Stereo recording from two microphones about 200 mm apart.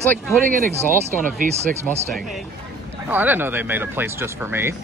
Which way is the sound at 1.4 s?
40° right (ahead or behind).